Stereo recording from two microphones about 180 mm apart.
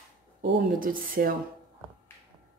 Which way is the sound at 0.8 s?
50° right (ahead or behind).